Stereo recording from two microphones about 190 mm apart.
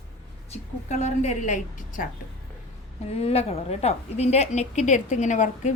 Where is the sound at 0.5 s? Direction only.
35° left (ahead or behind).